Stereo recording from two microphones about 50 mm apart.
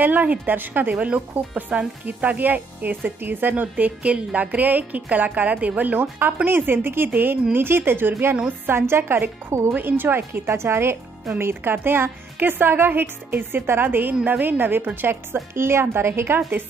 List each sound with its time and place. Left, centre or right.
0.0 s speech: right
0.9 s speech: right
9.8 s speech: right
15.5 s a woman's voice: right
16.3 s speech: right